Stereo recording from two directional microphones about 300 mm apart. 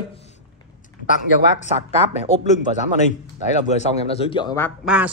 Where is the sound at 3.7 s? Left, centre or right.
Centre.